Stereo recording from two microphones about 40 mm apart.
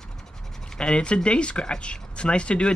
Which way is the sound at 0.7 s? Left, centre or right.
Left.